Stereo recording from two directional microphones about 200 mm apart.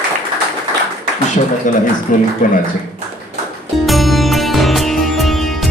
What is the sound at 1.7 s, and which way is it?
Speech, 40° left (ahead or behind).